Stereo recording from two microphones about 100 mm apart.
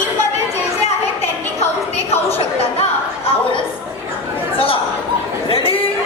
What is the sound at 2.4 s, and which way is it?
Chatter, 80° left.